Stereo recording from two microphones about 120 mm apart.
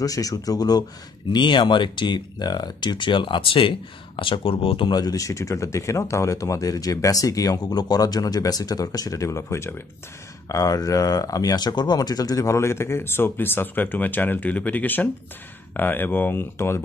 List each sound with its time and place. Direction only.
0.0 s speech: 30° left (ahead or behind)